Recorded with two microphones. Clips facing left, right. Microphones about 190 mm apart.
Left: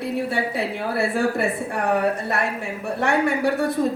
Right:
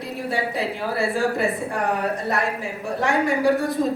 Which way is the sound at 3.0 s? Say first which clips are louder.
Even; 60° left (ahead or behind).